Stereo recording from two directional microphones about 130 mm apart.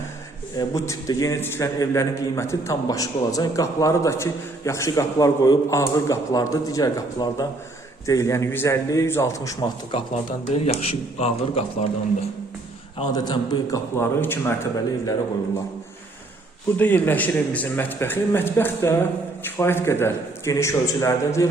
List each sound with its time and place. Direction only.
0.5 s a man's voice: 25° left (ahead or behind)
10.5 s speech: 55° left (ahead or behind)
13.1 s a man's voice: 35° left (ahead or behind)
13.7 s a man's voice: 15° left (ahead or behind)
16.7 s a man's voice: 15° left (ahead or behind)